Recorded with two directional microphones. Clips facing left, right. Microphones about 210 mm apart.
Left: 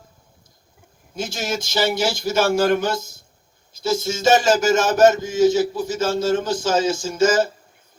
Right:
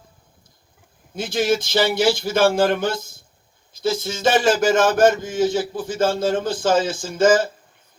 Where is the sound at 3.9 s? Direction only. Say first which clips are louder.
Left 2 dB; 45° left (ahead or behind).